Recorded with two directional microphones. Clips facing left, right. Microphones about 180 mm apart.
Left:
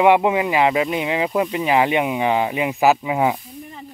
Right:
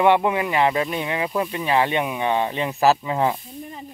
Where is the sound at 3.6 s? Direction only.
20° right (ahead or behind).